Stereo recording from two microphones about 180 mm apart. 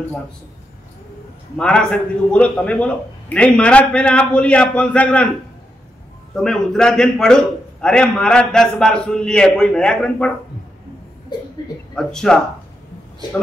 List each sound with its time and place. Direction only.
1.6 s a man's voice: 5° left (ahead or behind)
6.3 s a man's voice: 5° left (ahead or behind)
11.9 s a man's voice: 5° left (ahead or behind)